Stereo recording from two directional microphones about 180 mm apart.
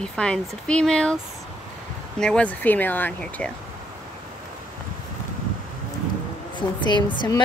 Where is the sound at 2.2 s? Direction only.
5° left (ahead or behind).